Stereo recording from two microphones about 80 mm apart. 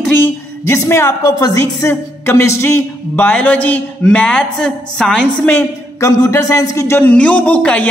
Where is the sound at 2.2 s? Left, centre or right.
Left.